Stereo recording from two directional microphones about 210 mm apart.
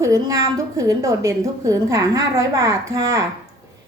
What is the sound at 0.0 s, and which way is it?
A woman's voice, 15° right (ahead or behind).